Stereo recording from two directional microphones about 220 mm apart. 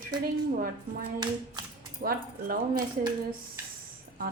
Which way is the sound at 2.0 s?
40° right (ahead or behind).